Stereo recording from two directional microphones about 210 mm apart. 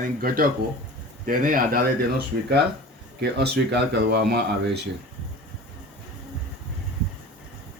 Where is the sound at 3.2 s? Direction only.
50° right (ahead or behind).